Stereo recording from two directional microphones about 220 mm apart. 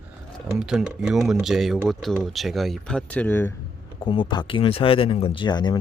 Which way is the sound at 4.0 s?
20° left (ahead or behind).